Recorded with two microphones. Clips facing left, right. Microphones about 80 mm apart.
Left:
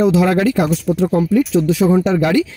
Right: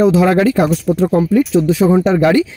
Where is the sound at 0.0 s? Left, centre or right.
Right.